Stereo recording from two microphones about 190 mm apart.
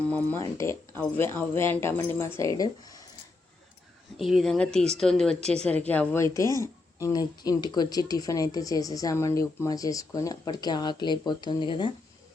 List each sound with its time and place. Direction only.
0.0 s speech: 5° left (ahead or behind)
4.2 s a woman's voice: centre (ahead or behind); by 11.9 s 25° left (ahead or behind)